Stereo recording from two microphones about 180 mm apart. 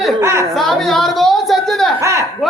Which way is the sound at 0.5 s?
Centre (ahead or behind).